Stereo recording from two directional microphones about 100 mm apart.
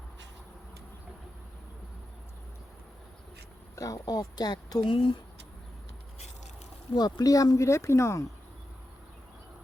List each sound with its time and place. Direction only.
3.8 s a woman's voice: 40° left (ahead or behind); by 5.1 s 55° left (ahead or behind)
6.9 s speech: 40° left (ahead or behind)